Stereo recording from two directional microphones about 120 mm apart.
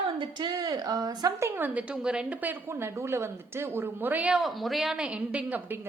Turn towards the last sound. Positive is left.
turn(degrees=-15)  # may be behind; listen again after turning